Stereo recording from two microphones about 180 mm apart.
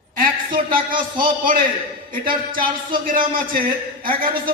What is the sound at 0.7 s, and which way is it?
A man's voice, 50° right (ahead or behind).